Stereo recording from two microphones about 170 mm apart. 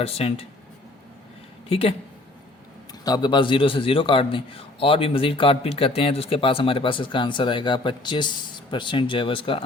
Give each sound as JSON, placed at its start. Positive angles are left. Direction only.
{"t": 0.0, "sound": "a man's voice", "side_deg": 35}
{"t": 1.7, "sound": "a man's voice", "side_deg": 35}
{"t": 3.0, "sound": "a man's voice", "side_deg": 25}